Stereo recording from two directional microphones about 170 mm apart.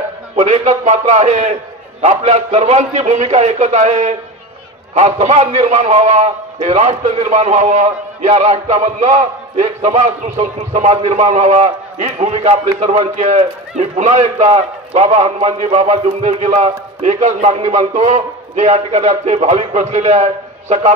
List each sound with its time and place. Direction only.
0.4 s a man's voice: 40° right (ahead or behind)